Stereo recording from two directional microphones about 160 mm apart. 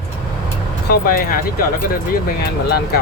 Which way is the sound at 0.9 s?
65° left (ahead or behind).